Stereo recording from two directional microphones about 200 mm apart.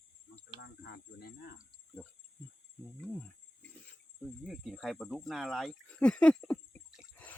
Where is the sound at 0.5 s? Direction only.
55° left (ahead or behind).